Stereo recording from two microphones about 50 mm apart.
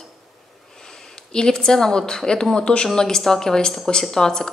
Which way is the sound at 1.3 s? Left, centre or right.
Centre.